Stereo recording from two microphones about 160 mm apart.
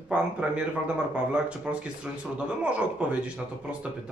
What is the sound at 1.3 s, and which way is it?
Speech, 5° right (ahead or behind).